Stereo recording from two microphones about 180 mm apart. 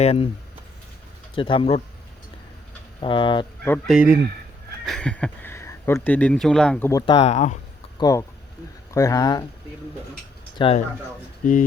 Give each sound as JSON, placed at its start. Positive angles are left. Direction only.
{"t": 0.0, "sound": "speech", "side_deg": 35}
{"t": 1.4, "sound": "speech", "side_deg": 30}
{"t": 3.0, "sound": "speech", "side_deg": 25}
{"t": 3.8, "sound": "speech", "side_deg": -5}
{"t": 7.0, "sound": "speech", "side_deg": 30}
{"t": 7.9, "sound": "speech", "side_deg": 20}
{"t": 10.6, "sound": "speech", "side_deg": 25}
{"t": 11.4, "sound": "speech", "side_deg": 45}